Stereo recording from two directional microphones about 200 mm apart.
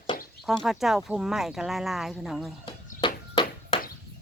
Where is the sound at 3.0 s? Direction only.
25° left (ahead or behind).